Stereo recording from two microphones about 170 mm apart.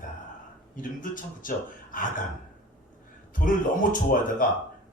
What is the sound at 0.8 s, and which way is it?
Speech, 50° left (ahead or behind).